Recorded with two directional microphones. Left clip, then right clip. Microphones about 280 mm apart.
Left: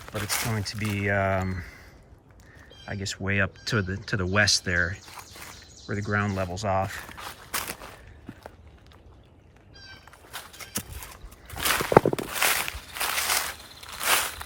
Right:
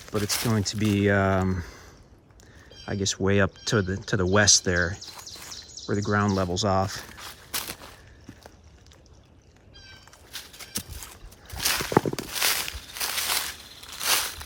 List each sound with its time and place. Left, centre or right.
0.0 s speech: centre
0.6 s speech: right
3.0 s speech: centre
7.1 s walk: centre
9.8 s horse: centre
11.5 s walk: centre